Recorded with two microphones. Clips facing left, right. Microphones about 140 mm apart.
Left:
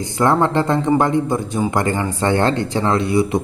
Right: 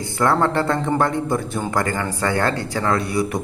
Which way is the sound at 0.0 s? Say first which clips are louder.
Left 2 dB; 20° left (ahead or behind).